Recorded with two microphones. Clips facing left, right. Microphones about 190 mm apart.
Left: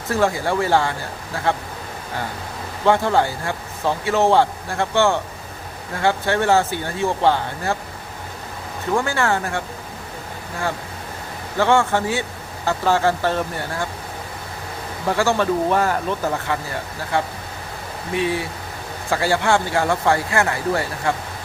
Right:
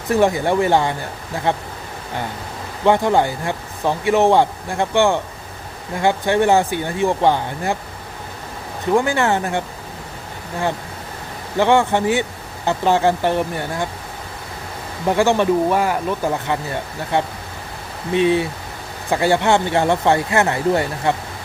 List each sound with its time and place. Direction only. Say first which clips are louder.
0.1 s speech: right 4 dB; 20° right (ahead or behind)
2.8 s speech: right 2 dB; 15° right (ahead or behind)
8.9 s speech: right 4 dB; 15° right (ahead or behind)
11.5 s speech: right 2 dB; 15° right (ahead or behind)
15.0 s speech: right 3 dB; 20° right (ahead or behind)